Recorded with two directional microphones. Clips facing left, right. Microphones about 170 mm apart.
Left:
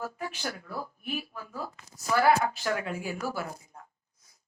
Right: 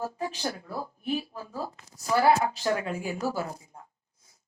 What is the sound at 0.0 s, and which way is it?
A woman's voice, 30° right (ahead or behind).